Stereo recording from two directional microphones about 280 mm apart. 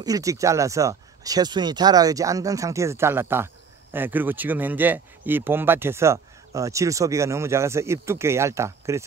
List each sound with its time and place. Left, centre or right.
0.0 s speech: centre